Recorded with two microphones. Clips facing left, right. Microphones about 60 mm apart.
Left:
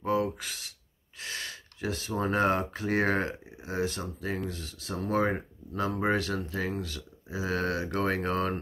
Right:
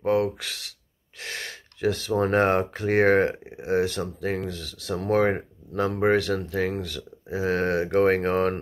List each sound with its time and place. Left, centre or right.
0.0 s a sound: right
1.2 s speech: right
3.5 s speech: right